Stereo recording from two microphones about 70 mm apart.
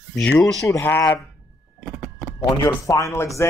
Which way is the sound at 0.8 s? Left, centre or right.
Left.